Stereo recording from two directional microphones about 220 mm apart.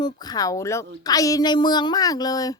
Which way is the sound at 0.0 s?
20° left (ahead or behind).